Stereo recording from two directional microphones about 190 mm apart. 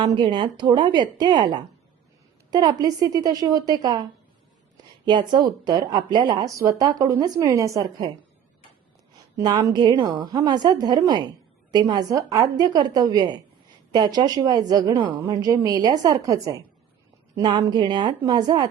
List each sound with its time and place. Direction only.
0.0 s a woman's voice: 25° right (ahead or behind)
9.4 s a woman's voice: 20° right (ahead or behind)